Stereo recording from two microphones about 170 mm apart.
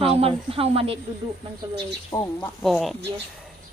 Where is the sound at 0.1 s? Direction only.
35° right (ahead or behind).